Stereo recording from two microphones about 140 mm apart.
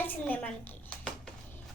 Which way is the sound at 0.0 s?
15° left (ahead or behind).